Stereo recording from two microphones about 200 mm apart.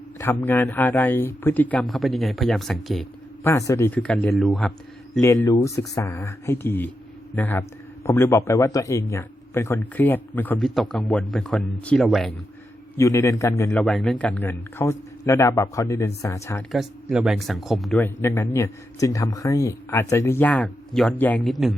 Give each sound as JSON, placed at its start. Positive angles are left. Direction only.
{"t": 0.2, "sound": "speech", "side_deg": 10}
{"t": 3.7, "sound": "speech", "side_deg": 10}
{"t": 5.2, "sound": "speech", "side_deg": 15}
{"t": 13.0, "sound": "speech", "side_deg": 15}
{"t": 13.7, "sound": "speech", "side_deg": 5}
{"t": 16.7, "sound": "speech", "side_deg": 0}
{"t": 18.0, "sound": "speech", "side_deg": 10}